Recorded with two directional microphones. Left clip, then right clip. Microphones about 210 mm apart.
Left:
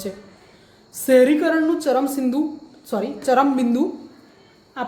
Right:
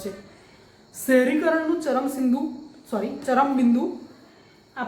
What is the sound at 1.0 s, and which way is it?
A woman's voice, 55° left (ahead or behind).